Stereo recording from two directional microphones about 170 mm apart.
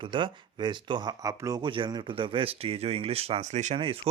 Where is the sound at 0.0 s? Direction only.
30° right (ahead or behind).